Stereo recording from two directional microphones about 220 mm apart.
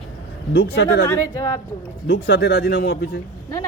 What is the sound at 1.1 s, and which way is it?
Speech, 15° left (ahead or behind).